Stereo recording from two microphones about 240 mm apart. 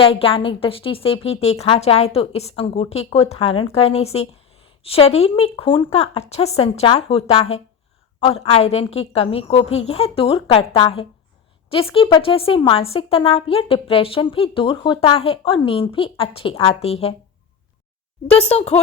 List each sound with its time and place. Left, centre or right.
0.0 s a woman's voice: left
18.3 s a woman's voice: left